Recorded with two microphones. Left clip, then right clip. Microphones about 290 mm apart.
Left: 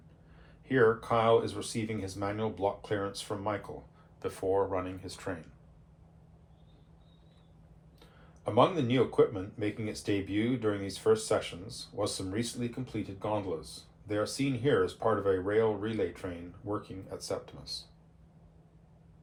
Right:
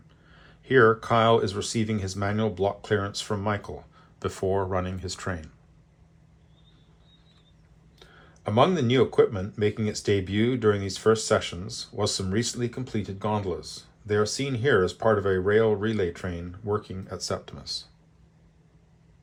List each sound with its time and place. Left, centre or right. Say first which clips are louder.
0.7 s speech: right 7 dB; right
8.4 s speech: right 4 dB; right